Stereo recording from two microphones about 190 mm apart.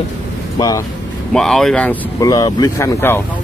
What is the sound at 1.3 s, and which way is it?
Speech, centre (ahead or behind).